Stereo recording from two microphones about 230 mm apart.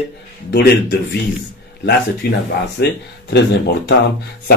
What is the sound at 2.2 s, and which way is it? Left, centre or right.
Speech, left.